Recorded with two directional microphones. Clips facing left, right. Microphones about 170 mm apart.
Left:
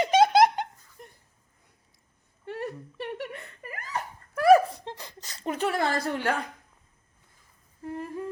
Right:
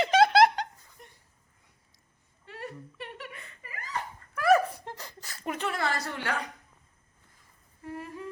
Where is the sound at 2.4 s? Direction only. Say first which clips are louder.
Left 7 dB; 55° left (ahead or behind).